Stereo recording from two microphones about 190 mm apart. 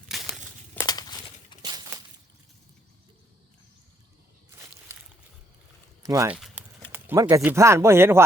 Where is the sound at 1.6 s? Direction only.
20° right (ahead or behind).